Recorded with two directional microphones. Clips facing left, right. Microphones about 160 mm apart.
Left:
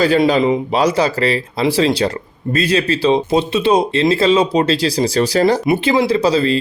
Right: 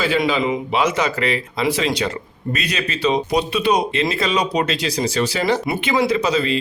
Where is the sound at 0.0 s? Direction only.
40° left (ahead or behind).